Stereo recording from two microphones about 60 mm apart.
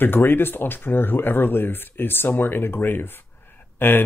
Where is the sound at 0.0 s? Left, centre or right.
Left.